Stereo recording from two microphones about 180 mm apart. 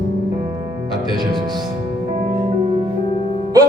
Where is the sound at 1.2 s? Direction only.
25° right (ahead or behind).